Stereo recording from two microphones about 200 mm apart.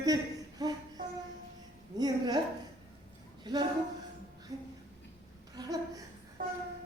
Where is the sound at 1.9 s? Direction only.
20° right (ahead or behind).